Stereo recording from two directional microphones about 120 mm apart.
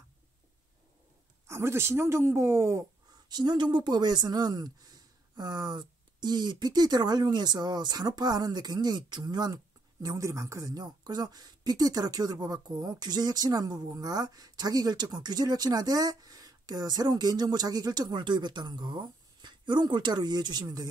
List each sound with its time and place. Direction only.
1.5 s speech: 20° right (ahead or behind)
3.3 s speech: 35° right (ahead or behind)